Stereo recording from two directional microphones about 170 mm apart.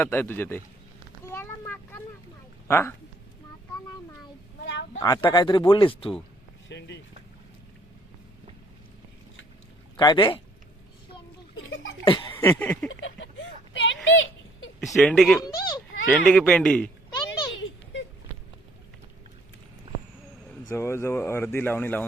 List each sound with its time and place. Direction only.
0.0 s a man's voice: 10° left (ahead or behind)
1.3 s a sound: 10° left (ahead or behind)
2.6 s speech: 15° left (ahead or behind)
4.6 s a sound: 90° left
4.9 s speech: 20° left (ahead or behind)
6.7 s vehicle: 90° left
10.0 s speech: 25° left (ahead or behind)
12.0 s a sound: 30° left (ahead or behind)
12.4 s a man's voice: 15° left (ahead or behind)
13.7 s a sound: 90° left
14.8 s speech: centre (ahead or behind)
15.4 s speech: 25° left (ahead or behind)
16.2 s speech: 5° left (ahead or behind)
20.5 s a man's voice: 15° left (ahead or behind)